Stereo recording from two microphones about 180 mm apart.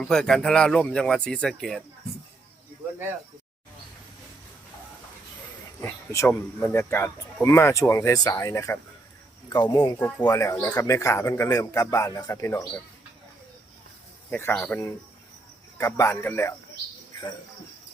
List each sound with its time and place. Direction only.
0.0 s speech: 5° left (ahead or behind)
5.8 s speech: 15° left (ahead or behind)
10.0 s speech: 10° left (ahead or behind)
14.3 s speech: 10° left (ahead or behind)